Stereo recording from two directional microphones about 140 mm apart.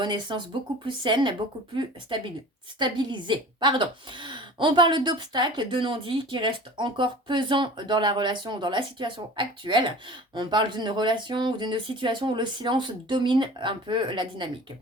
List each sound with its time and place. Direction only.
0.0 s a woman's voice: 35° right (ahead or behind)